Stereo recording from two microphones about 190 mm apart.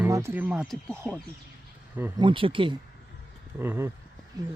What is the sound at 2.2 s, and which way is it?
Speech, 25° right (ahead or behind).